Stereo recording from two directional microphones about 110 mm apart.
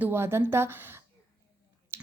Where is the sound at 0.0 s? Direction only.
20° right (ahead or behind).